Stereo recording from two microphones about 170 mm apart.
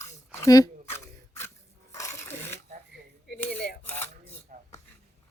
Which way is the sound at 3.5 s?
65° left (ahead or behind).